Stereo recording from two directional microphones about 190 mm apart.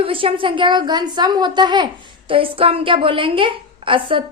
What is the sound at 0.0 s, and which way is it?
A woman's voice, 30° right (ahead or behind).